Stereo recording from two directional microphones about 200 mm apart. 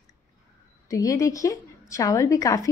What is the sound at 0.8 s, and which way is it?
A woman's voice, 15° left (ahead or behind).